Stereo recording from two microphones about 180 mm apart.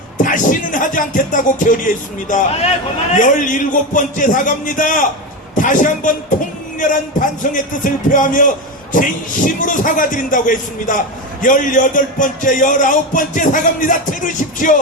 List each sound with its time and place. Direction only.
0.2 s speech: 45° left (ahead or behind)